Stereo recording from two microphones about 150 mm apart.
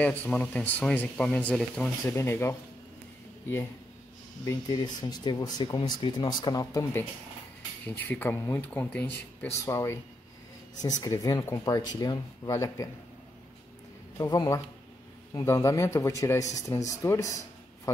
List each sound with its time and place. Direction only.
0.0 s speech: 10° left (ahead or behind)
4.5 s speech: 25° left (ahead or behind)
14.1 s speech: 25° left (ahead or behind)